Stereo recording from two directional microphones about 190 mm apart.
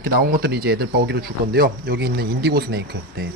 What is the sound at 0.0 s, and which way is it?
A man's voice, 50° right (ahead or behind).